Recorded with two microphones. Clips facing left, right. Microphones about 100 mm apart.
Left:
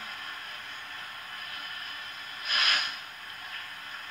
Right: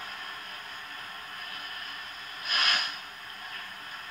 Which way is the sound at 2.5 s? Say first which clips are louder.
Even; 35° right (ahead or behind).